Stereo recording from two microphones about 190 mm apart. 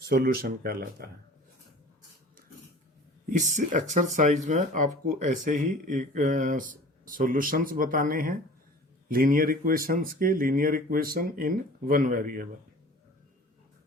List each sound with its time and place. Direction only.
0.1 s speech: 55° right (ahead or behind)
3.2 s speech: 40° right (ahead or behind)